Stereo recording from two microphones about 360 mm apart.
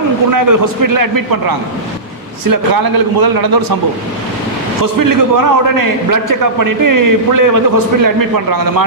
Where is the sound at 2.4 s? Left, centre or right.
Right.